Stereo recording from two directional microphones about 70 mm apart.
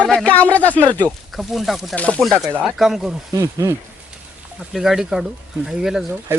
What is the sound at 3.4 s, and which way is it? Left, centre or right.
Speech, right.